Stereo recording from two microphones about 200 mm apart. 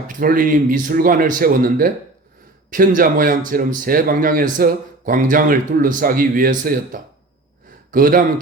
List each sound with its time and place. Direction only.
0.1 s speech: 45° right (ahead or behind)